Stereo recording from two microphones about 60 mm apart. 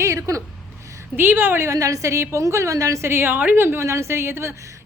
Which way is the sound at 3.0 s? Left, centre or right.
Right.